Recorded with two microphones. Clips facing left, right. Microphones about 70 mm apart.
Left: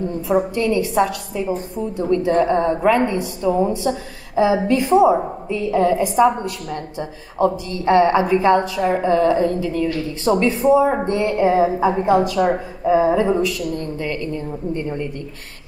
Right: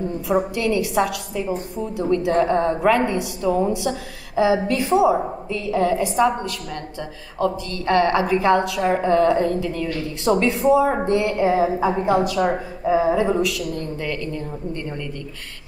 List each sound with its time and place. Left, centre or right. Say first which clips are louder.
0.1 s a woman's voice: left 3 dB; centre
5.5 s a woman's voice: left 3 dB; left
8.4 s a woman's voice: left 2 dB; centre
14.7 s a woman's voice: left 8 dB; centre